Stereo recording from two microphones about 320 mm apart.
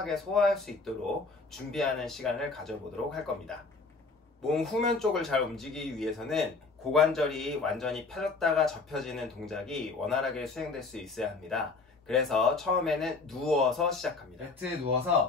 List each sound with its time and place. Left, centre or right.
0.0 s speech: centre